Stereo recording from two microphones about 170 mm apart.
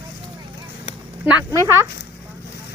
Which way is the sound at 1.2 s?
15° right (ahead or behind).